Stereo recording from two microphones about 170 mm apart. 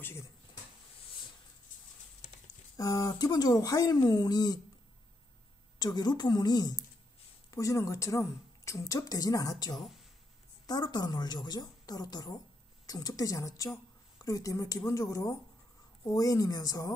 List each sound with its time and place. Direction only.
0.0 s speech: 15° left (ahead or behind)
2.8 s a woman's voice: 20° left (ahead or behind)
5.8 s a woman's voice: 25° left (ahead or behind)